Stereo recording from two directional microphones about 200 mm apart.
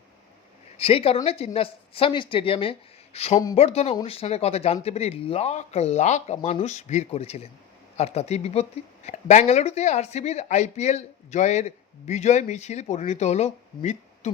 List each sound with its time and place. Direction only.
0.8 s speech: 30° left (ahead or behind)
3.3 s speech: 20° left (ahead or behind)
3.6 s speech: 30° left (ahead or behind)